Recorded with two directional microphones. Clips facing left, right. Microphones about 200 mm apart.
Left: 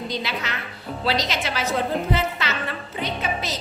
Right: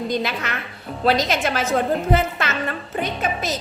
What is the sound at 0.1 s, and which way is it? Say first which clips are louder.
A woman's voice: right 4 dB; 50° right (ahead or behind).